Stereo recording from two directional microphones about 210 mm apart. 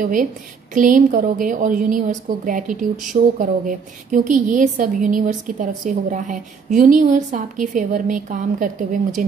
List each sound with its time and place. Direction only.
0.0 s a woman's voice: 40° right (ahead or behind)